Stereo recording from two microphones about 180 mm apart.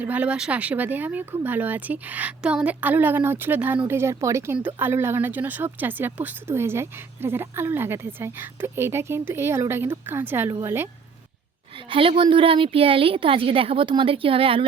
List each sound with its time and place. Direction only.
0.0 s a woman's voice: 10° right (ahead or behind)
11.9 s a woman's voice: 30° right (ahead or behind)